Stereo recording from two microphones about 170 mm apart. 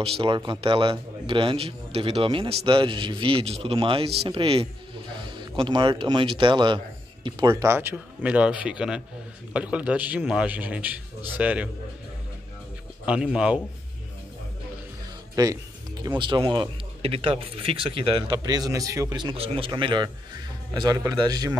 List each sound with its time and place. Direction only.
0.0 s a man's voice: 30° right (ahead or behind); by 11.7 s 5° right (ahead or behind)
13.0 s speech: 5° right (ahead or behind)
15.3 s music: 20° right (ahead or behind)
16.2 s speech: 25° right (ahead or behind)
19.3 s speech: 35° right (ahead or behind)